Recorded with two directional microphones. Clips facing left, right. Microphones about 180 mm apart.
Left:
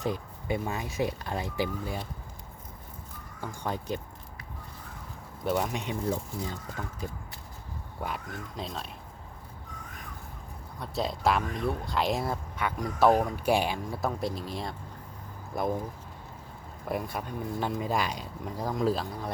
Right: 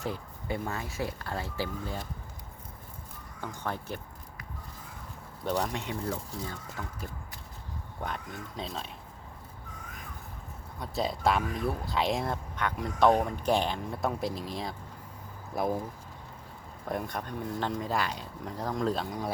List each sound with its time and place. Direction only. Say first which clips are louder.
0.0 s speech: left 3 dB; 15° left (ahead or behind)
3.4 s speech: left 2 dB; 15° left (ahead or behind)
5.5 s speech: left 2 dB; 5° left (ahead or behind)
5.8 s speech: left 3 dB; 20° left (ahead or behind)
8.0 s speech: left 1 dB; 5° left (ahead or behind)
10.8 s speech: even; centre (ahead or behind)
16.8 s speech: left 1 dB; 5° left (ahead or behind)